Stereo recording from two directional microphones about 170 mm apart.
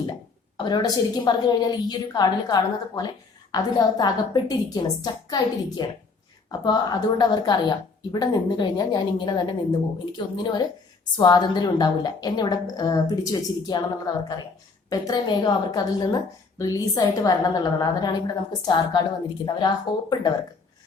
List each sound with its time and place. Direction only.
0.5 s a woman's voice: 25° left (ahead or behind)